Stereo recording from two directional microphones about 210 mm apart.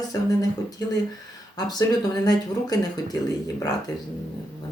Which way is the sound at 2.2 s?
20° left (ahead or behind).